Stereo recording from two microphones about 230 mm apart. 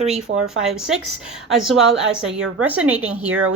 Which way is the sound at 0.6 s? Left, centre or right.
Centre.